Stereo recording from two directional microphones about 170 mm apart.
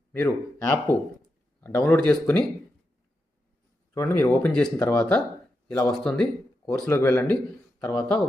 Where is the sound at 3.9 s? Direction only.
15° left (ahead or behind).